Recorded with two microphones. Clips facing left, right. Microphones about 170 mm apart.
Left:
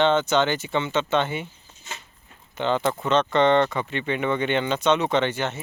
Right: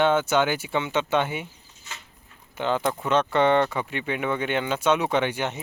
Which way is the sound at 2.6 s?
10° right (ahead or behind).